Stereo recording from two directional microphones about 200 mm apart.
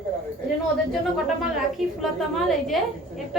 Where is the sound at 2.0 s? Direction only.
Centre (ahead or behind).